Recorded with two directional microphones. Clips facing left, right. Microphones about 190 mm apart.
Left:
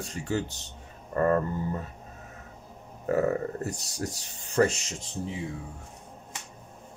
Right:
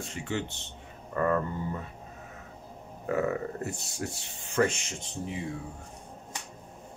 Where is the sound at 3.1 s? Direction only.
40° left (ahead or behind).